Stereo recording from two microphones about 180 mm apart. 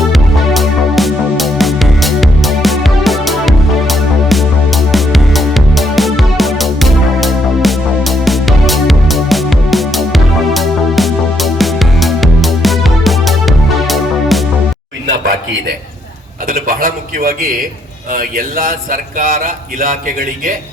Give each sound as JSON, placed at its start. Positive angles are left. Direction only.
{"t": 0.1, "sound": "music", "side_deg": 0}
{"t": 16.5, "sound": "a sound", "side_deg": -50}
{"t": 18.1, "sound": "speech", "side_deg": -50}